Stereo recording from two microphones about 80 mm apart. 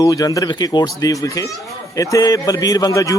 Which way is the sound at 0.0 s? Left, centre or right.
Left.